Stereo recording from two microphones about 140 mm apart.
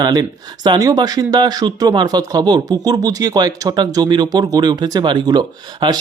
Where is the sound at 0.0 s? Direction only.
30° right (ahead or behind).